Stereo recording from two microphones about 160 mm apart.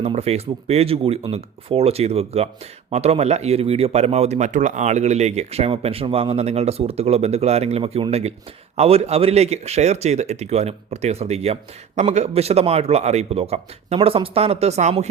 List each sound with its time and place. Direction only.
0.0 s speech: 40° right (ahead or behind)